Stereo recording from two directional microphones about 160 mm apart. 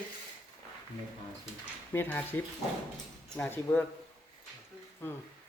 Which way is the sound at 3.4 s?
10° left (ahead or behind).